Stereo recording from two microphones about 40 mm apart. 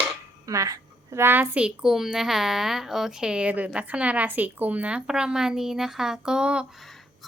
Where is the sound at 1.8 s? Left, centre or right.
Centre.